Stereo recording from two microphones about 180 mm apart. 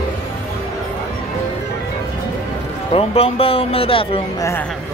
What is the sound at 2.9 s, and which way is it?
A man's voice, 30° left (ahead or behind).